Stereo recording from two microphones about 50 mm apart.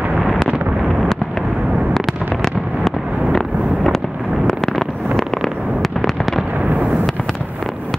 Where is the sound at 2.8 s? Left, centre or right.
Centre.